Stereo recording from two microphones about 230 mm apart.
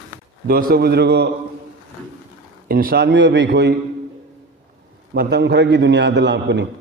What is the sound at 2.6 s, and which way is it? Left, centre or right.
A man's voice, right.